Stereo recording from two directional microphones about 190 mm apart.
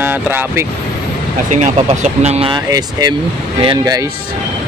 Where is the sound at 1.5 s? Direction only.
40° right (ahead or behind).